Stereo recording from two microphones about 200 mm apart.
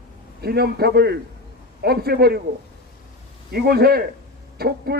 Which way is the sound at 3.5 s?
50° right (ahead or behind).